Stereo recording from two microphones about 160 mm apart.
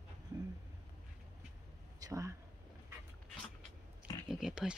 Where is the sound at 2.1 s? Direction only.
20° right (ahead or behind).